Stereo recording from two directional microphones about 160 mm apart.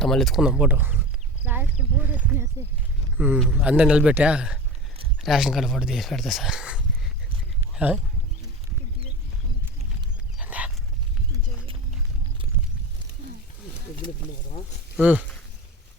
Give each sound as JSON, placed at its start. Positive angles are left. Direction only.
{"t": 0.0, "sound": "speech", "side_deg": 5}
{"t": 10.3, "sound": "dog", "side_deg": -10}